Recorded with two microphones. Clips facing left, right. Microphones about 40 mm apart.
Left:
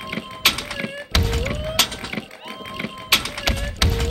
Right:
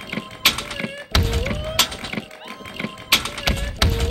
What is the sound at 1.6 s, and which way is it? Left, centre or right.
Mechanisms, centre.